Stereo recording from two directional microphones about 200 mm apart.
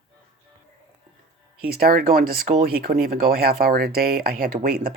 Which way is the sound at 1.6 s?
50° right (ahead or behind).